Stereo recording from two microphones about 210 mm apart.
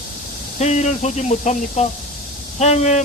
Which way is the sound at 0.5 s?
35° left (ahead or behind).